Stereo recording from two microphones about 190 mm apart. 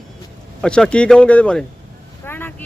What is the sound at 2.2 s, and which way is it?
Vehicle, 10° left (ahead or behind).